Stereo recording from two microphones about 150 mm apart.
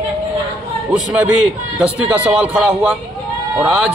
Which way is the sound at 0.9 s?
10° right (ahead or behind).